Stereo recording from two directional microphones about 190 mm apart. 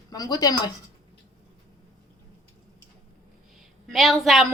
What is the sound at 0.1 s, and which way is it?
Speech, 20° left (ahead or behind).